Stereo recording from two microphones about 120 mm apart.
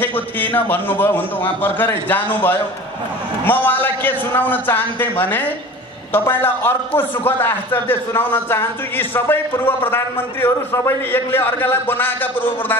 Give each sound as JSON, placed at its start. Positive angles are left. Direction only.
{"t": 0.4, "sound": "a man's voice", "side_deg": 15}